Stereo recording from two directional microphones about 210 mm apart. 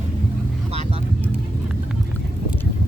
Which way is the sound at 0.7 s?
30° right (ahead or behind).